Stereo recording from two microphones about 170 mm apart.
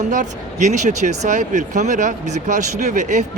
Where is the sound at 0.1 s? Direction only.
45° right (ahead or behind).